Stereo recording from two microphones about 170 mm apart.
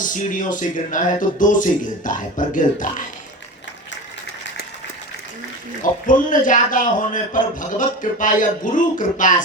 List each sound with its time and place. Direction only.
0.0 s speech: 50° left (ahead or behind)
5.8 s speech: 50° left (ahead or behind)